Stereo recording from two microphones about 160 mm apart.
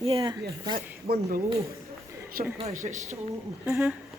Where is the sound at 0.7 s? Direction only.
70° right (ahead or behind).